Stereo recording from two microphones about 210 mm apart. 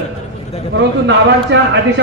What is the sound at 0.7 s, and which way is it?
A man's voice, 60° right (ahead or behind).